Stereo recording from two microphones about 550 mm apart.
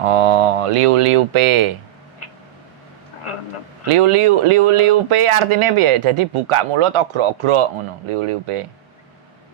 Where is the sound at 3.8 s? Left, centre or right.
Right.